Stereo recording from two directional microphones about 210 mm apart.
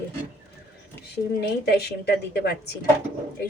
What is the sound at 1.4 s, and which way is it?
Speech, 50° left (ahead or behind).